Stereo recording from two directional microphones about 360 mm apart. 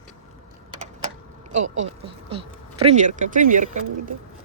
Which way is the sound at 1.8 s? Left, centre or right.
Right.